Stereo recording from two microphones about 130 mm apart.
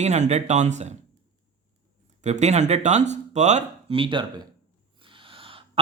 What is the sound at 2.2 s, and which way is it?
Speech, 60° right (ahead or behind).